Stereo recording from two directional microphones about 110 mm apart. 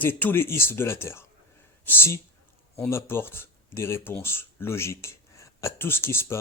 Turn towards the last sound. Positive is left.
turn(degrees=20)  # may be behind; listen again after turning